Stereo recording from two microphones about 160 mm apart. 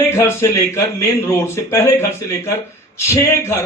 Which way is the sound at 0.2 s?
15° left (ahead or behind).